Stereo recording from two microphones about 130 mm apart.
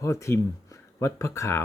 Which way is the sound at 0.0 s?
20° left (ahead or behind).